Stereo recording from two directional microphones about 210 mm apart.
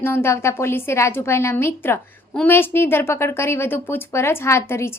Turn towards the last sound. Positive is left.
turn(degrees=10)  # may be behind; listen again after turning